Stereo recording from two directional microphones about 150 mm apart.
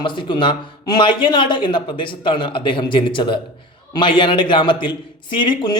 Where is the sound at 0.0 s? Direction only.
30° left (ahead or behind).